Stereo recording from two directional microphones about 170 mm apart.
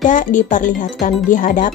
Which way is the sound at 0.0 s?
50° left (ahead or behind).